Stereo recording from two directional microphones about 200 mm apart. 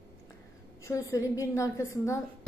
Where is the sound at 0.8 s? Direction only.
15° left (ahead or behind).